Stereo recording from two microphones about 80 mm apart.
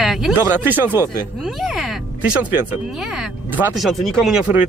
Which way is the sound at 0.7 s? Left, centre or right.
Right.